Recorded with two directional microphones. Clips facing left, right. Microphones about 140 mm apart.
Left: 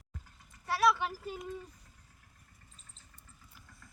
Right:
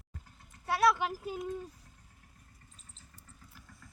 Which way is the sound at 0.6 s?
20° right (ahead or behind).